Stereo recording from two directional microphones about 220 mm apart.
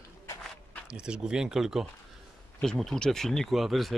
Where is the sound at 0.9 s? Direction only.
5° right (ahead or behind).